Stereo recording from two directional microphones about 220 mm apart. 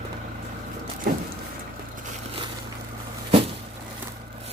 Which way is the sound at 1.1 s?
40° right (ahead or behind).